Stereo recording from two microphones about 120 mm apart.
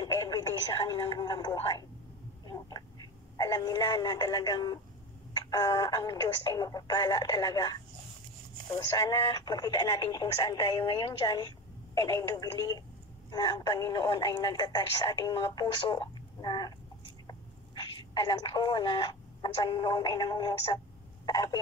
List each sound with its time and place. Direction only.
0.0 s telephone: 30° left (ahead or behind)
1.2 s speech: 35° left (ahead or behind)